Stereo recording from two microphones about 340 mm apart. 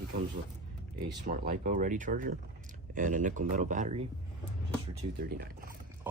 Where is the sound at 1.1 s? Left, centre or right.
Right.